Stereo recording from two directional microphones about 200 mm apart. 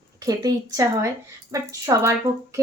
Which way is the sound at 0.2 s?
15° right (ahead or behind).